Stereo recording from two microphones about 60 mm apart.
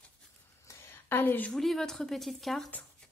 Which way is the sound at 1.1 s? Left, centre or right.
Left.